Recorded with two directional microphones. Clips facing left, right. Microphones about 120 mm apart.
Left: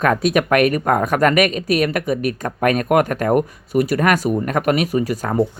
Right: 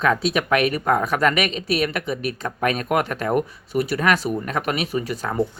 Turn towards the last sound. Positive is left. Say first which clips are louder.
# left 5 dB
turn(degrees=40)  # may be behind; listen again after turning